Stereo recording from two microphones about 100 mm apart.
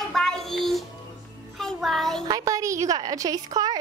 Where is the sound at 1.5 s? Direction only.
5° left (ahead or behind).